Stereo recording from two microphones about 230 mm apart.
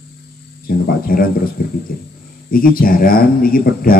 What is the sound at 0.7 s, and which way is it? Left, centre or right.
Speech, left.